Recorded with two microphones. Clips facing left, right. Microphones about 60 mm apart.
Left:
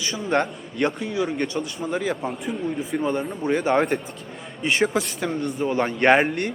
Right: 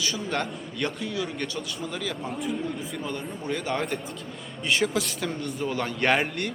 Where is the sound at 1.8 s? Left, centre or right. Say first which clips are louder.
Left 8 dB; left.